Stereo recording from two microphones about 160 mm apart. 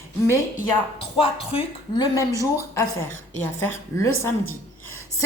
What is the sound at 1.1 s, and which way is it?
Speech, 35° left (ahead or behind).